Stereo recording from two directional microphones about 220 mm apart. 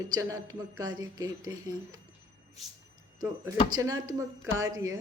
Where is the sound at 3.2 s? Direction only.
15° right (ahead or behind).